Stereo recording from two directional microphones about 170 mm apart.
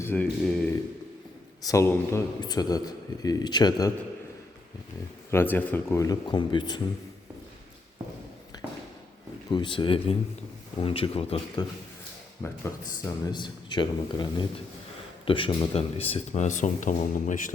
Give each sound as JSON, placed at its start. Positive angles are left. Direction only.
{"t": 0.0, "sound": "speech", "side_deg": 10}
{"t": 1.6, "sound": "speech", "side_deg": 15}
{"t": 5.3, "sound": "speech", "side_deg": 10}
{"t": 8.5, "sound": "a sound", "side_deg": 25}
{"t": 9.5, "sound": "speech", "side_deg": 30}
{"t": 12.4, "sound": "speech", "side_deg": 15}
{"t": 13.2, "sound": "speech", "side_deg": 25}